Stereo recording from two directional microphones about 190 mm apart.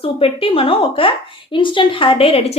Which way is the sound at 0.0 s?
30° left (ahead or behind).